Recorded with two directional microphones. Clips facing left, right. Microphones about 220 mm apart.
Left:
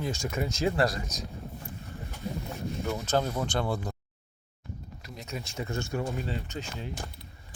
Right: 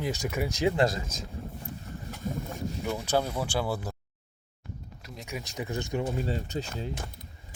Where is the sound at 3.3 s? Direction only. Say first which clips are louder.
Even; 10° right (ahead or behind).